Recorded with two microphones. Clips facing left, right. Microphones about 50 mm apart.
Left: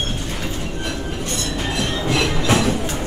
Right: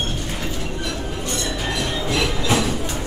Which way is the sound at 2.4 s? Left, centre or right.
Left.